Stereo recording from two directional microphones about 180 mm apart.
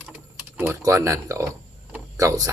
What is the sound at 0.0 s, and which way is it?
Typing, 10° right (ahead or behind).